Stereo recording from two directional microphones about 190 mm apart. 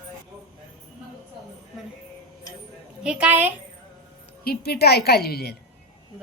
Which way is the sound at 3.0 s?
5° right (ahead or behind).